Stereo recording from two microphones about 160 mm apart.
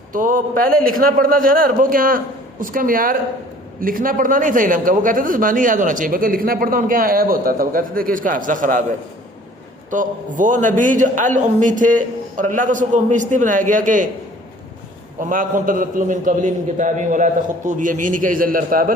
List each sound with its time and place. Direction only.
0.1 s a man's voice: 55° right (ahead or behind)
9.9 s a man's voice: 55° right (ahead or behind)
15.2 s a man's voice: 55° right (ahead or behind)